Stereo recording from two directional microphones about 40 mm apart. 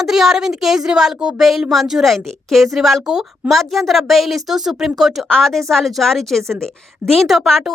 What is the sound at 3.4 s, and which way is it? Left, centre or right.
A woman's voice, centre.